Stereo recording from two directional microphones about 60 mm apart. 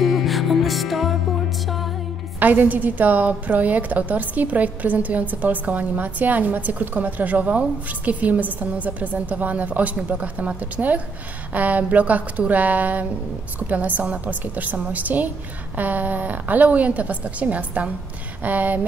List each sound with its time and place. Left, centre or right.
0.0 s music: centre
2.4 s a woman's voice: right